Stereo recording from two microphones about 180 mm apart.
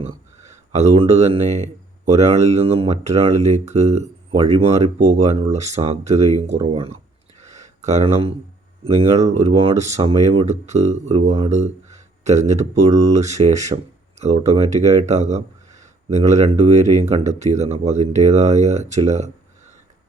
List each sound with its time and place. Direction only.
0.0 s speech: 40° right (ahead or behind)
7.4 s a sound: 40° right (ahead or behind)
8.8 s speech: 35° right (ahead or behind)